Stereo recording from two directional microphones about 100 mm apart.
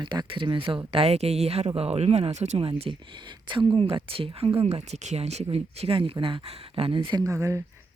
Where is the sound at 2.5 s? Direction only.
70° right (ahead or behind).